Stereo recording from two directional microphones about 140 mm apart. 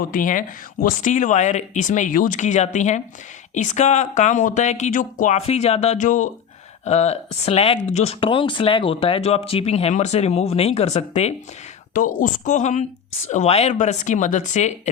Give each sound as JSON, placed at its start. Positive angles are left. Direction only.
{"t": 0.1, "sound": "speech", "side_deg": 70}
{"t": 6.8, "sound": "speech", "side_deg": 50}
{"t": 11.9, "sound": "speech", "side_deg": 70}